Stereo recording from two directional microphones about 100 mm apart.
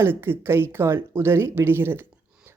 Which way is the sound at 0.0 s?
25° right (ahead or behind).